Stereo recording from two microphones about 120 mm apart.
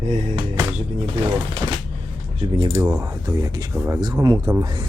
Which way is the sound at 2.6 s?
35° right (ahead or behind).